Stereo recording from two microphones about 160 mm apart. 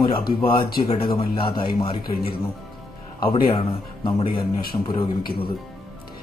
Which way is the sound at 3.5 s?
35° left (ahead or behind).